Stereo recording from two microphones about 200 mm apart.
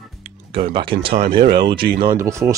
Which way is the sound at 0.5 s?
25° right (ahead or behind).